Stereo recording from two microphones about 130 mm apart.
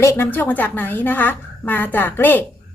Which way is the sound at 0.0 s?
20° left (ahead or behind).